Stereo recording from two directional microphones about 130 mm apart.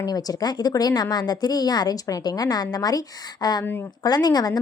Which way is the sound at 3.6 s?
15° left (ahead or behind).